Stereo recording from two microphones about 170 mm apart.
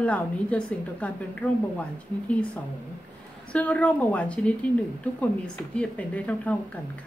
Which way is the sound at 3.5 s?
10° left (ahead or behind).